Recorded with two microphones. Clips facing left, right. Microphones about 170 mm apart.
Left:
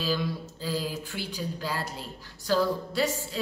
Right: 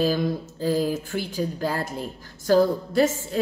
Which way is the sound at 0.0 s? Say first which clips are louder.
Right 7 dB; 45° right (ahead or behind).